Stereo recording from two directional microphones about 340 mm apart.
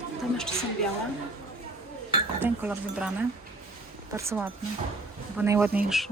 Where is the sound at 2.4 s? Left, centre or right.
Centre.